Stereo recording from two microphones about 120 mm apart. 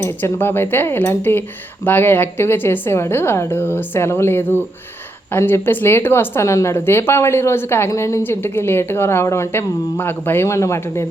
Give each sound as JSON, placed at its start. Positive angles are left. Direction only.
{"t": 0.0, "sound": "speech", "side_deg": 20}